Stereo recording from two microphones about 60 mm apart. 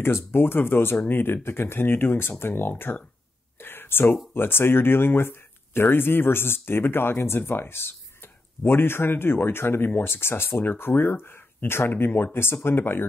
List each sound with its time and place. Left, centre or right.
0.0 s speech: left